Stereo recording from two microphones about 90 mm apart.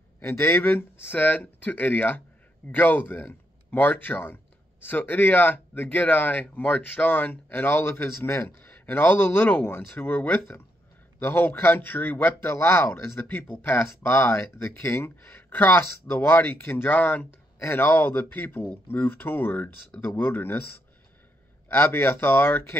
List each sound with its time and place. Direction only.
0.2 s speech: 25° left (ahead or behind)
21.6 s speech: 25° left (ahead or behind)